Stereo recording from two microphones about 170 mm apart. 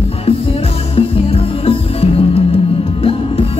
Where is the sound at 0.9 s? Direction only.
35° left (ahead or behind).